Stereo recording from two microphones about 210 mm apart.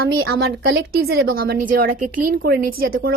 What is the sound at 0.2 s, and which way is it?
Speech, 50° right (ahead or behind).